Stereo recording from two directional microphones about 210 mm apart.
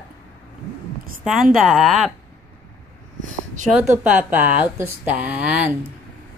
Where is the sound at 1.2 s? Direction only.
Centre (ahead or behind).